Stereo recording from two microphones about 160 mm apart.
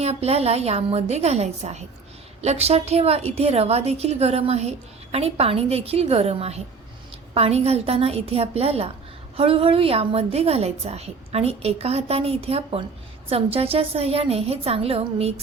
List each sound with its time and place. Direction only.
0.0 s a woman's voice: 40° right (ahead or behind)